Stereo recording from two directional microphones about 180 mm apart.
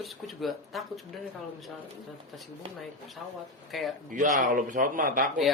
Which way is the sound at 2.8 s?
Centre (ahead or behind).